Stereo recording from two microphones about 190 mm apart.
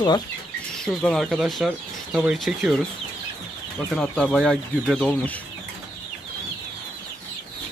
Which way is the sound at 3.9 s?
5° left (ahead or behind).